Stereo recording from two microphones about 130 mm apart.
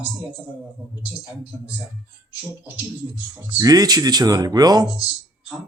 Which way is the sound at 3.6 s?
30° right (ahead or behind).